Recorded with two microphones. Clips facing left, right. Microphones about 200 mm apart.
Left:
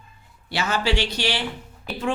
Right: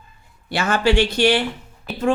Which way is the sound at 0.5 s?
50° right (ahead or behind).